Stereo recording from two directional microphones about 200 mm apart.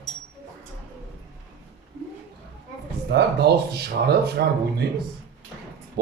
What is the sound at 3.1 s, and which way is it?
Speech, 55° right (ahead or behind).